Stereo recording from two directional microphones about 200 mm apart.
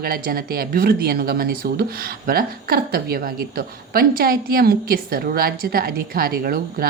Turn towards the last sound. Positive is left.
turn(degrees=-50)  # may be behind; listen again after turning